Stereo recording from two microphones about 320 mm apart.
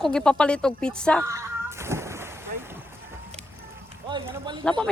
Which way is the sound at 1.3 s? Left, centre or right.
Centre.